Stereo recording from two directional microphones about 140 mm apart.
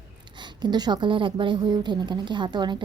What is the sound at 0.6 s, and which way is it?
Speech, 30° right (ahead or behind).